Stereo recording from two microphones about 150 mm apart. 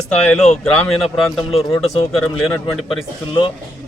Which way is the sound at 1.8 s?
40° left (ahead or behind).